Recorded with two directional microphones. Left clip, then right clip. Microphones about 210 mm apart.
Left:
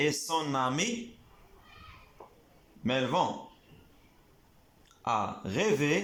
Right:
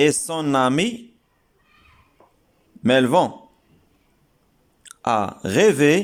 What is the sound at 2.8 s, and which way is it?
Speech, 55° right (ahead or behind).